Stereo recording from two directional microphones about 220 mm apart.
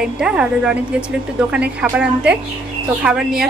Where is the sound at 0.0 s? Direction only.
5° right (ahead or behind).